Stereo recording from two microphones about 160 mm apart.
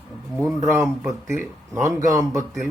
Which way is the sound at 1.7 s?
20° right (ahead or behind).